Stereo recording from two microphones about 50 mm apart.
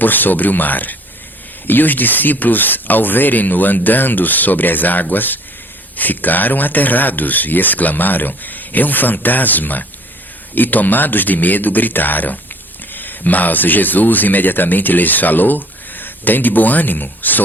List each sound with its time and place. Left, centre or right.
0.0 s speech: left